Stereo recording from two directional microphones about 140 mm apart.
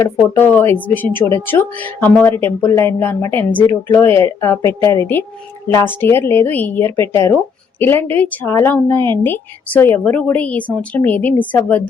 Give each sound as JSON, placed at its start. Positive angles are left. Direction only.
{"t": 0.0, "sound": "a woman's voice", "side_deg": 15}